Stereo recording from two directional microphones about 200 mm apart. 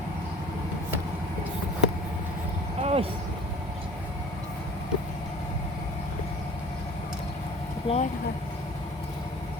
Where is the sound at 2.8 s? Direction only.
30° right (ahead or behind).